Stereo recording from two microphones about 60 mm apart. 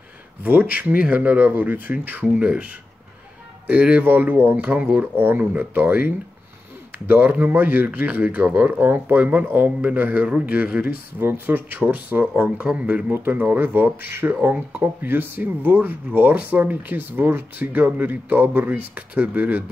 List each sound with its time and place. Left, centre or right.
0.4 s speech: right
3.7 s speech: right
5.1 s speech: right
11.1 s speech: right
12.6 s speech: right
13.1 s speech: right